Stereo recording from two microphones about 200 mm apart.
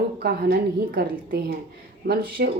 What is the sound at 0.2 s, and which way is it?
Speech, 50° right (ahead or behind).